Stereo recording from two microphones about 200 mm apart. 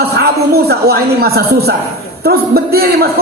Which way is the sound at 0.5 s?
50° right (ahead or behind).